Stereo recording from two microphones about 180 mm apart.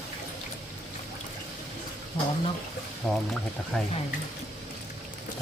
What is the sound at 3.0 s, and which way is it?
Speech, centre (ahead or behind).